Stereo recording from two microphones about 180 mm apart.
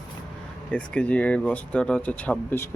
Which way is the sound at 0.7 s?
5° left (ahead or behind).